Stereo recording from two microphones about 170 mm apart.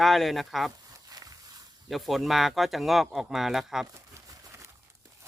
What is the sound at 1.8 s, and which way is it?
Speech, centre (ahead or behind).